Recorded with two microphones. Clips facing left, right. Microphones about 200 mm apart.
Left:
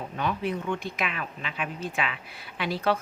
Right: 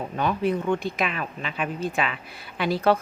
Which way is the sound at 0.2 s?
40° right (ahead or behind).